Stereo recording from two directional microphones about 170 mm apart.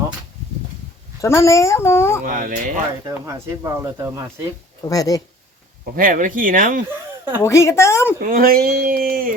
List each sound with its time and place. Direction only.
1.2 s speech: 15° left (ahead or behind)
2.2 s speech: 50° right (ahead or behind)
3.1 s speech: 15° right (ahead or behind)
4.9 s speech: 20° left (ahead or behind)
5.8 s speech: 55° right (ahead or behind)
7.4 s speech: 15° left (ahead or behind)
8.2 s speech: 60° right (ahead or behind)